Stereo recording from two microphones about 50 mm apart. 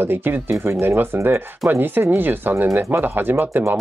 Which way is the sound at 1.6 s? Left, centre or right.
Right.